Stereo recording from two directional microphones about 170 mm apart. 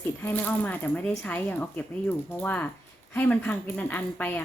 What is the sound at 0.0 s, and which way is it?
Speech, 10° left (ahead or behind).